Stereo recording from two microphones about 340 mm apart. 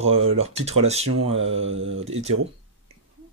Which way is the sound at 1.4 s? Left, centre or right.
Right.